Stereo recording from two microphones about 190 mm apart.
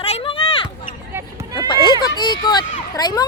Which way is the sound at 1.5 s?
25° left (ahead or behind).